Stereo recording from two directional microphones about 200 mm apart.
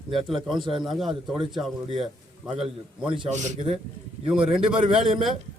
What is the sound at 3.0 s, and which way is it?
Speech, 25° right (ahead or behind).